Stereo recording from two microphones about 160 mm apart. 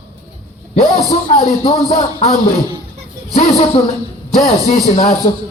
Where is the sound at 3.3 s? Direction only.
40° left (ahead or behind).